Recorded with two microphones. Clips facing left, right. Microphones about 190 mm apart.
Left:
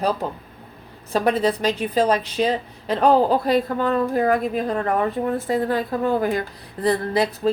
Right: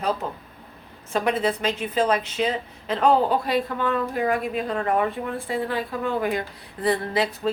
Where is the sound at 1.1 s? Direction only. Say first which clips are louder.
Left 3 dB; 35° left (ahead or behind).